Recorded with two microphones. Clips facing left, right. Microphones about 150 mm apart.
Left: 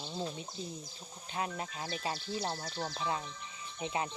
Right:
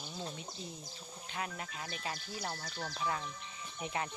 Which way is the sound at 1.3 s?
30° left (ahead or behind).